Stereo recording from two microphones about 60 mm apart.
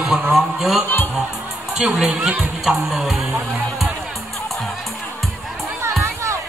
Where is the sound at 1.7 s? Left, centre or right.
Centre.